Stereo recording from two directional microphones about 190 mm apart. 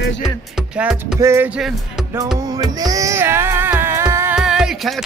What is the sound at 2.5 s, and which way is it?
Music, 20° right (ahead or behind).